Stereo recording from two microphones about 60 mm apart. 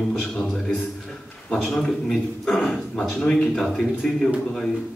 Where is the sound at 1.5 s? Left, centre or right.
Centre.